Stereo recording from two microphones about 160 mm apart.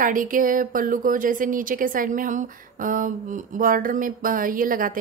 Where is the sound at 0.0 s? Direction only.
55° right (ahead or behind).